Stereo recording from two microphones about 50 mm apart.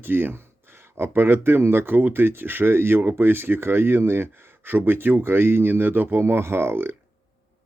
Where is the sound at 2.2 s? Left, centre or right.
Right.